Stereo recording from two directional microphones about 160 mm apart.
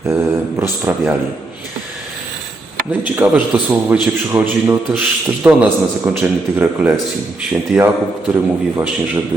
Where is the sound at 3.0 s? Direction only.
10° right (ahead or behind).